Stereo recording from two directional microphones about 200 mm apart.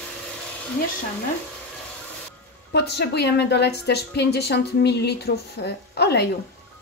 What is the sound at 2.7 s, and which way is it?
A woman's voice, 55° left (ahead or behind).